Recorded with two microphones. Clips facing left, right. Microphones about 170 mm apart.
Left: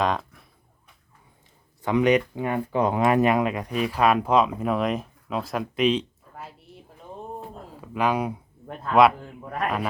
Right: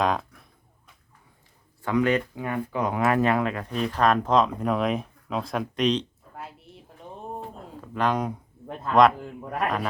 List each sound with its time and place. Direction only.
0.0 s a sound: centre (ahead or behind)
1.8 s speech: 20° left (ahead or behind); by 6.5 s 5° left (ahead or behind)
7.8 s a man's voice: 10° left (ahead or behind)